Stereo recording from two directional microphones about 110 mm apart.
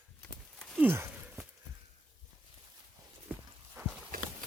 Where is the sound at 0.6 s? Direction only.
5° left (ahead or behind).